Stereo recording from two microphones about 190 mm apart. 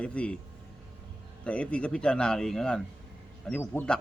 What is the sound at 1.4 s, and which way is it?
Speech, 5° left (ahead or behind).